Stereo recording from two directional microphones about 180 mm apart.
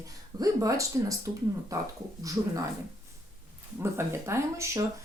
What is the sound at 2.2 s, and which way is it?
Speech, 20° right (ahead or behind).